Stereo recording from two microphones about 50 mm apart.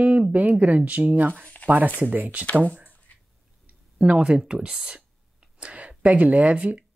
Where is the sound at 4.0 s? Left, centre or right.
Right.